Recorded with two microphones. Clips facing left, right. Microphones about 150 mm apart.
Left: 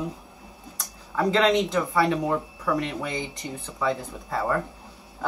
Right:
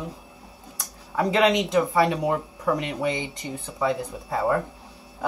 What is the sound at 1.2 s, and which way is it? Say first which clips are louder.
Speech: even; 10° right (ahead or behind).